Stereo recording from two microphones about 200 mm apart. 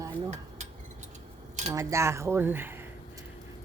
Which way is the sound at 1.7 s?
15° right (ahead or behind).